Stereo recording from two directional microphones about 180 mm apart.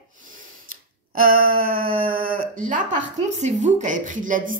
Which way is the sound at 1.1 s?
55° right (ahead or behind).